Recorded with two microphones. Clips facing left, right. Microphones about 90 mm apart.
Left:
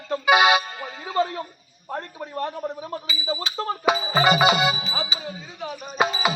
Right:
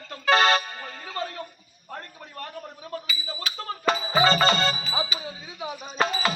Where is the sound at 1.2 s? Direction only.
25° left (ahead or behind).